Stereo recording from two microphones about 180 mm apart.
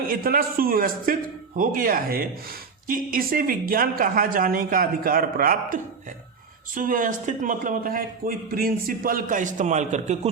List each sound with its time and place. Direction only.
0.1 s speech: 55° right (ahead or behind)